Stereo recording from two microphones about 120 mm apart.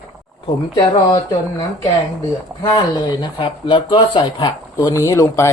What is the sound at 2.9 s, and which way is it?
Speech, 35° left (ahead or behind).